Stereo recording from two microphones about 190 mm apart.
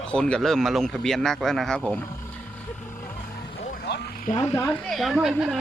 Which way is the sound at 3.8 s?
60° left (ahead or behind).